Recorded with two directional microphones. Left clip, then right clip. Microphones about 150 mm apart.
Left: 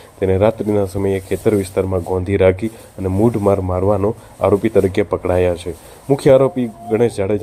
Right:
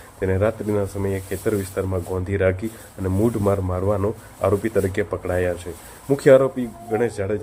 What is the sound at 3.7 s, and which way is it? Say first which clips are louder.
Speech: left 6 dB; 25° left (ahead or behind).